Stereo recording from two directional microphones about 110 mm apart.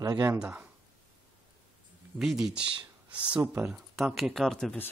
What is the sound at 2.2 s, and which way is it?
Speech, 5° right (ahead or behind).